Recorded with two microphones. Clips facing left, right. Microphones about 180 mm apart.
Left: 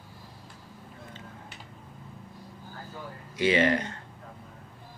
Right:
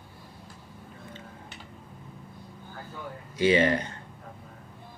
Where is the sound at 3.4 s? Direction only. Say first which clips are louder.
Right 1 dB; 30° right (ahead or behind).